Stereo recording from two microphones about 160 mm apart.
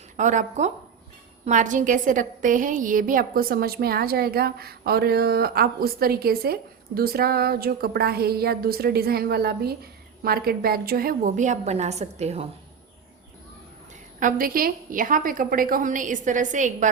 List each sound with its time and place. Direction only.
0.2 s a woman's voice: 50° right (ahead or behind)
14.2 s a woman's voice: 60° right (ahead or behind)